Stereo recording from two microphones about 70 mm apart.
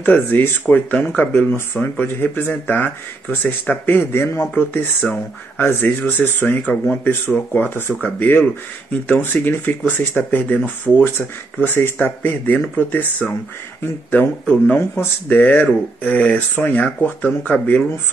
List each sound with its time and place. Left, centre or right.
0.0 s speech: left
5.0 s speech: centre
5.6 s speech: left
14.8 s speech: left